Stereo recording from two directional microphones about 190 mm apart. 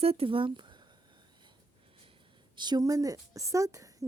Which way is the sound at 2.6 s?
20° right (ahead or behind).